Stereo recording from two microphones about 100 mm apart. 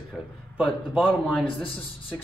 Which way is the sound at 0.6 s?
10° right (ahead or behind).